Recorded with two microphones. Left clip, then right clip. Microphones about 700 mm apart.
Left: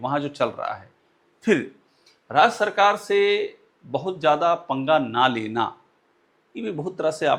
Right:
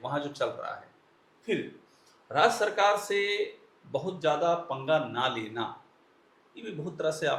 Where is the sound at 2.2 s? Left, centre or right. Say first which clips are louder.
Left 6 dB; left.